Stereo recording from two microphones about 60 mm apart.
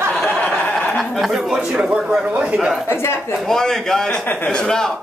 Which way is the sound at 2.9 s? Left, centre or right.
Left.